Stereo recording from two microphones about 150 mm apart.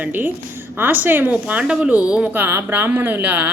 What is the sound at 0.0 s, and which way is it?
A woman's voice, 10° right (ahead or behind).